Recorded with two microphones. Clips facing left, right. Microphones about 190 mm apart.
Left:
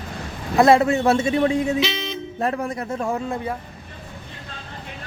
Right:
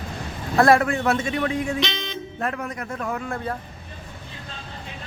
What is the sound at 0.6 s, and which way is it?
A man's voice, 25° left (ahead or behind).